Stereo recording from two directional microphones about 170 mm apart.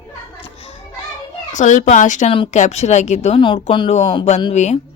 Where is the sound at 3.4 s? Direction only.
30° left (ahead or behind).